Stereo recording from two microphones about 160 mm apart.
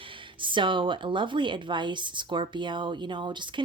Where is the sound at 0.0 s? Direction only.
30° right (ahead or behind).